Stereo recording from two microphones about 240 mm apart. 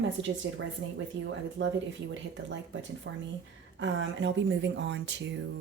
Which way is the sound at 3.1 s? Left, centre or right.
Right.